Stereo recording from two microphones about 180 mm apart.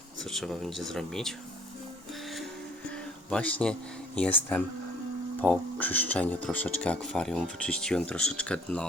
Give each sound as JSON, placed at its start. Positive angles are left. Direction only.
{"t": 0.3, "sound": "speech", "side_deg": 0}
{"t": 3.2, "sound": "speech", "side_deg": 5}